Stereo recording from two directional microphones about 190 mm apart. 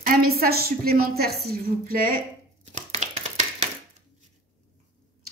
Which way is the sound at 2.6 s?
40° right (ahead or behind).